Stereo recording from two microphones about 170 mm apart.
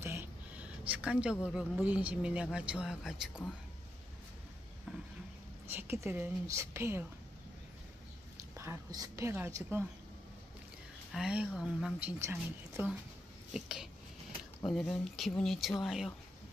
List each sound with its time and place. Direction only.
0.0 s a sound: 15° right (ahead or behind)
1.4 s speech: 5° right (ahead or behind)
5.7 s a woman's voice: 15° right (ahead or behind)
8.4 s a woman's voice: 15° right (ahead or behind)
11.1 s speech: 5° right (ahead or behind)
13.5 s speech: 5° right (ahead or behind)